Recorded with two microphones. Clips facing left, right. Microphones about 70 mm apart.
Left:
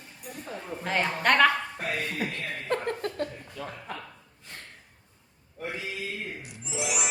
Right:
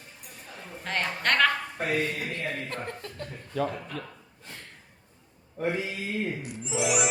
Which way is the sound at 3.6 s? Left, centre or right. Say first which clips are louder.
Right 10 dB; right.